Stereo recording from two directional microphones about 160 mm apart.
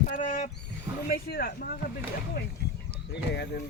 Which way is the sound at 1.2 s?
80° left.